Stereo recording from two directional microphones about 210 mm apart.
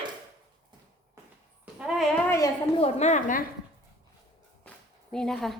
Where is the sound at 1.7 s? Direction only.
Centre (ahead or behind).